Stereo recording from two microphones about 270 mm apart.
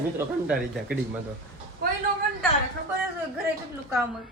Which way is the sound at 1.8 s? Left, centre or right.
Right.